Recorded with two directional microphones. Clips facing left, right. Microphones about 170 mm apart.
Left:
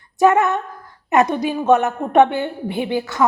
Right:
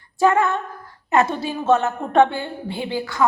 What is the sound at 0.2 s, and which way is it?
A woman's voice, 20° left (ahead or behind).